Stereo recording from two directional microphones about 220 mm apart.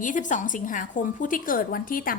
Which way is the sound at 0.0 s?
35° left (ahead or behind).